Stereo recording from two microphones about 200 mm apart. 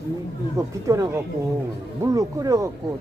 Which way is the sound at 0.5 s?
15° right (ahead or behind).